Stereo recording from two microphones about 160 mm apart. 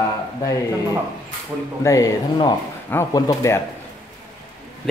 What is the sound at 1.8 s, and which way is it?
Speech, 20° left (ahead or behind).